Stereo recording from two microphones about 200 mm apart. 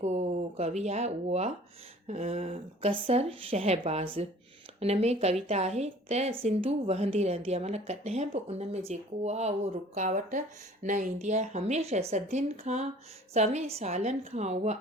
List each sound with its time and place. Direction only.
0.0 s a woman's voice: 35° right (ahead or behind)